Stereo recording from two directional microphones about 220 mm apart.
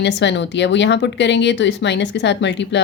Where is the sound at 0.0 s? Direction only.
50° left (ahead or behind).